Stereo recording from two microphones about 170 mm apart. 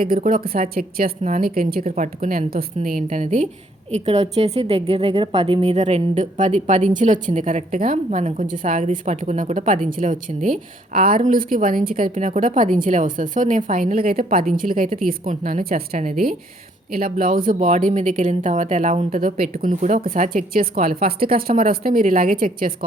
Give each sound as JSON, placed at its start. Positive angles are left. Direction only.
{"t": 0.0, "sound": "a woman's voice", "side_deg": -55}
{"t": 5.7, "sound": "a woman's voice", "side_deg": -45}